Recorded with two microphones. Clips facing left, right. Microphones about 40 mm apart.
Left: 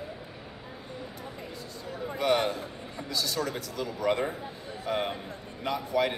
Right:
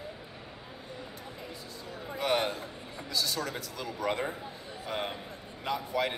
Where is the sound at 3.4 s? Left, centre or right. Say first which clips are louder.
Left 4 dB; centre.